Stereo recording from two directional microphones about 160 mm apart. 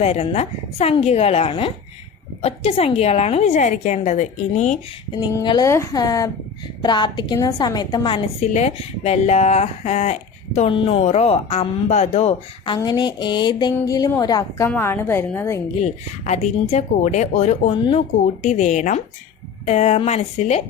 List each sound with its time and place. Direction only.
0.0 s speech: 40° left (ahead or behind)
5.3 s a woman's voice: 25° left (ahead or behind)
8.4 s a woman's voice: 45° left (ahead or behind); by 15.6 s 15° left (ahead or behind)
15.8 s speech: 45° left (ahead or behind)